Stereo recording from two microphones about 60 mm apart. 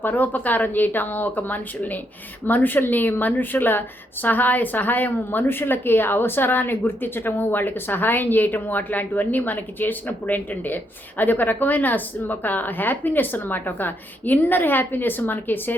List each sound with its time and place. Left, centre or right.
0.0 s a woman's voice: left